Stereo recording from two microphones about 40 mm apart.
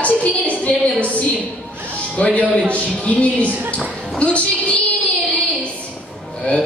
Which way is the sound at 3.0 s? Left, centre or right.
Left.